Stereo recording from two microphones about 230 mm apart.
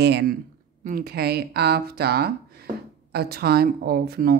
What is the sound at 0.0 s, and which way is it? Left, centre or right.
Speech, right.